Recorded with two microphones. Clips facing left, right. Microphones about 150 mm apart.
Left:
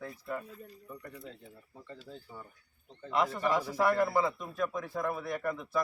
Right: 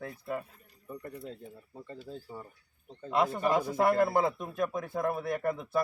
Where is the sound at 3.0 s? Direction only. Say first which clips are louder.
Right 2 dB; 25° right (ahead or behind).